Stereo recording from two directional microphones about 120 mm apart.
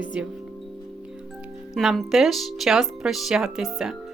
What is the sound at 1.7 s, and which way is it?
A woman's voice, centre (ahead or behind).